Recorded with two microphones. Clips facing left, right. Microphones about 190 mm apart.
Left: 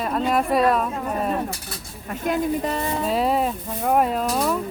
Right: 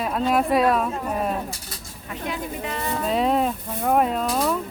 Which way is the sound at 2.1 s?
50° left (ahead or behind).